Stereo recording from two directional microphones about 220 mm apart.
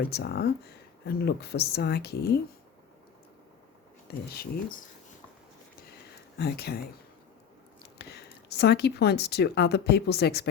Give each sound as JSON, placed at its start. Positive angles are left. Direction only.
{"t": 0.0, "sound": "speech", "side_deg": 45}
{"t": 6.4, "sound": "speech", "side_deg": 45}
{"t": 7.9, "sound": "speech", "side_deg": 50}